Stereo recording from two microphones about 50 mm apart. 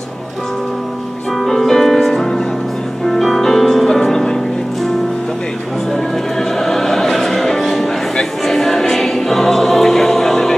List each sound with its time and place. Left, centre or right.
1.4 s music: centre
6.6 s music: centre
8.2 s choir: centre